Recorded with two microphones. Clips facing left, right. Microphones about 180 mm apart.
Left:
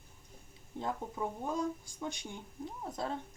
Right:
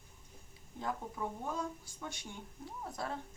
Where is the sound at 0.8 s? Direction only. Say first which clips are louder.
Left 2 dB; 20° left (ahead or behind).